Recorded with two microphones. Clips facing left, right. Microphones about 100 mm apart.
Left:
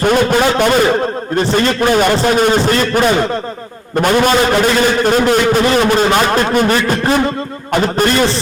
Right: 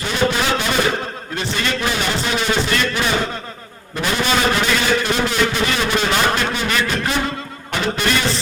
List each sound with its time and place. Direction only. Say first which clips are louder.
0.0 s a man's voice: left 8 dB; 50° left (ahead or behind)